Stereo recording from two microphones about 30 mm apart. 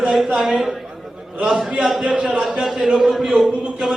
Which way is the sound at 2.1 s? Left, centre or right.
Right.